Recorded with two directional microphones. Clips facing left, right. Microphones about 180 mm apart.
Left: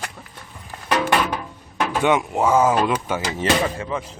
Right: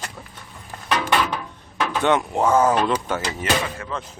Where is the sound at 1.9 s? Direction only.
10° left (ahead or behind).